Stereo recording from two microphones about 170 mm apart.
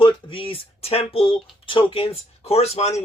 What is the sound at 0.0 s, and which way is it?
Speech, 30° left (ahead or behind).